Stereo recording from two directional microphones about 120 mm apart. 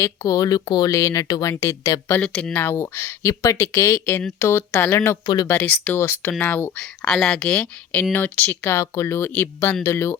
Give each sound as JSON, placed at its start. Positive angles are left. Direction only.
{"t": 0.0, "sound": "speech", "side_deg": 30}
{"t": 2.2, "sound": "speech", "side_deg": 10}
{"t": 5.2, "sound": "speech", "side_deg": 40}
{"t": 5.5, "sound": "speech", "side_deg": 15}